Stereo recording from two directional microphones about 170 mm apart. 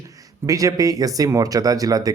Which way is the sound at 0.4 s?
20° right (ahead or behind).